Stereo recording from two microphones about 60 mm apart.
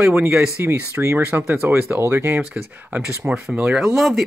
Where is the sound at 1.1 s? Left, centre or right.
Right.